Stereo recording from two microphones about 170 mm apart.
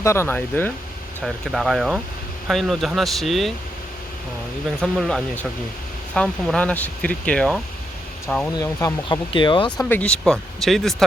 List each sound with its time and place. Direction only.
0.0 s speech: 15° left (ahead or behind)
1.2 s speech: centre (ahead or behind)
4.8 s speech: centre (ahead or behind)
8.5 s speech: 15° left (ahead or behind)
9.0 s speech: 30° left (ahead or behind)
9.7 s speech: 5° left (ahead or behind)